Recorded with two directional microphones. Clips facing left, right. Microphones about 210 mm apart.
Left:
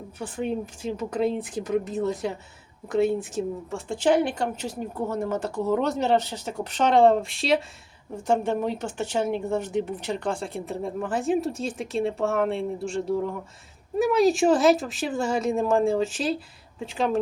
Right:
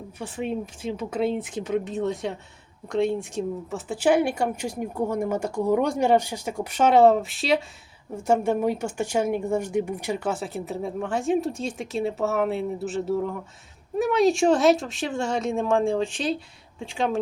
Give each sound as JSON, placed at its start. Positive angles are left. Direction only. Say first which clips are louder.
{"t": 0.2, "sound": "speech", "louder": "left 1 dB", "side_deg": 0}